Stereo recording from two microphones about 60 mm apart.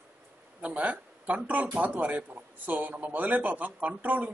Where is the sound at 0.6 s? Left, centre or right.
Right.